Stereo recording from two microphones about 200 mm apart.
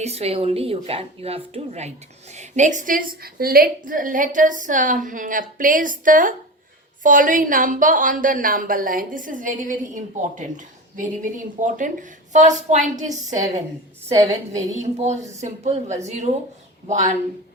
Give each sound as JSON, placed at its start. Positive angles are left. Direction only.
{"t": 0.0, "sound": "a woman's voice", "side_deg": -30}
{"t": 14.2, "sound": "a woman's voice", "side_deg": -15}
{"t": 14.8, "sound": "a woman's voice", "side_deg": -35}